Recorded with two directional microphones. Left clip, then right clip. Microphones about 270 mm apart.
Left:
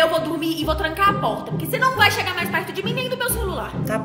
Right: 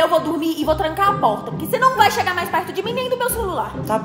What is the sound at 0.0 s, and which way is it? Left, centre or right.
A woman's voice, centre.